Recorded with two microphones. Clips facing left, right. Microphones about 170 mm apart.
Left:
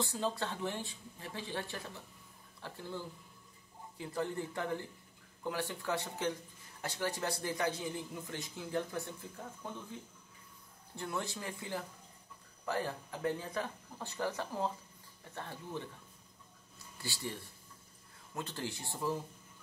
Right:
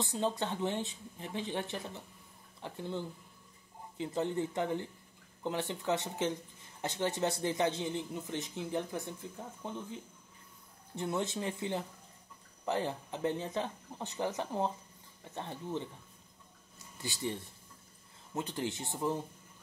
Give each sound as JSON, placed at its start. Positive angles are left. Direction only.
{"t": 0.0, "sound": "speech", "side_deg": -20}
{"t": 11.0, "sound": "speech", "side_deg": -20}
{"t": 16.7, "sound": "a sound", "side_deg": -20}
{"t": 18.3, "sound": "speech", "side_deg": -20}